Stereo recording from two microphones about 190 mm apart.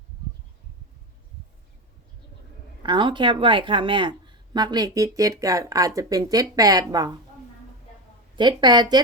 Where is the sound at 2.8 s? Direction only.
25° right (ahead or behind).